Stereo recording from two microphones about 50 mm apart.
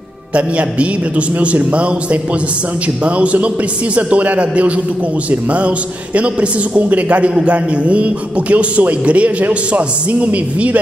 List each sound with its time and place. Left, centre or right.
0.3 s speech: right